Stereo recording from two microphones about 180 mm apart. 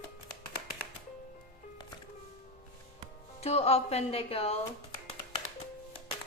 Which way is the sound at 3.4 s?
35° left (ahead or behind).